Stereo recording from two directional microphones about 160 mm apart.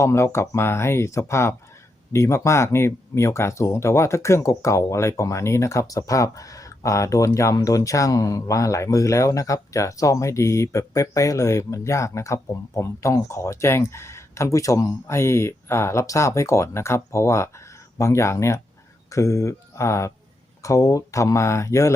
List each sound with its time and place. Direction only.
0.0 s speech: 15° left (ahead or behind)